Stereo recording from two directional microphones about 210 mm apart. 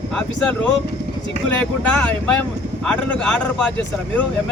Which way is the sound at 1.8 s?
5° left (ahead or behind).